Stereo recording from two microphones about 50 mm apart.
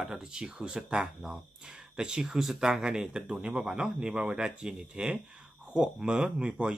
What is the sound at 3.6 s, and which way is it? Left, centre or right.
Speech, centre.